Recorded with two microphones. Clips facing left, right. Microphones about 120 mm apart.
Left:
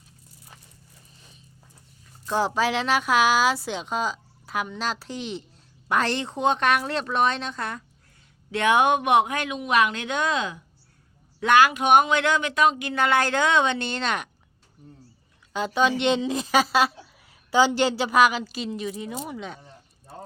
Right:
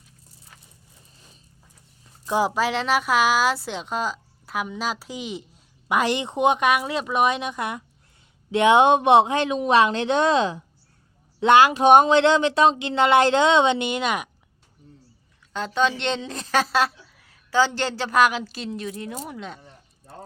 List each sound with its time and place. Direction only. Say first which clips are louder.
2.2 s a woman's voice: right 1 dB; 10° right (ahead or behind)
15.5 s speech: left 1 dB; 5° left (ahead or behind)
17.5 s a woman's voice: left 2 dB; 15° left (ahead or behind)